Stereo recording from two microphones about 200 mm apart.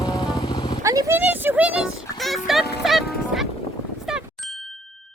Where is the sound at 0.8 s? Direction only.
15° right (ahead or behind).